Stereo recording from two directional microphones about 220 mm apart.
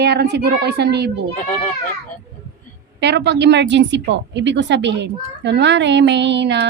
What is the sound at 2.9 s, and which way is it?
A woman's voice, 50° right (ahead or behind).